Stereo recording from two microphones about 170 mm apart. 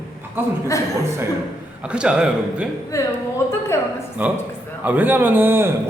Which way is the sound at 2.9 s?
15° left (ahead or behind).